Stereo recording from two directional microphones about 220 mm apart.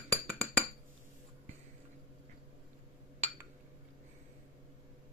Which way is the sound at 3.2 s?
30° right (ahead or behind).